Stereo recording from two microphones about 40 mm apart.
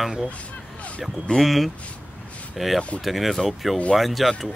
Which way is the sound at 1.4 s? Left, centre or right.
Centre.